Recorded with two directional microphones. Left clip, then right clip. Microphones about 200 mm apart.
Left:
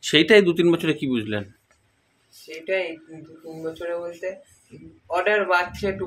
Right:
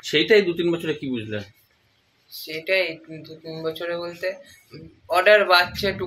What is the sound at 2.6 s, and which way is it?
Speech, centre (ahead or behind).